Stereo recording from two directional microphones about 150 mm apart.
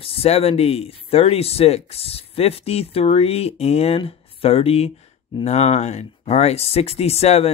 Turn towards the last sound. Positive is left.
turn(degrees=45)  # may be behind; listen again after turning